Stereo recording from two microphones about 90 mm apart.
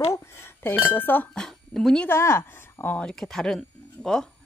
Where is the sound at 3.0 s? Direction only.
5° left (ahead or behind).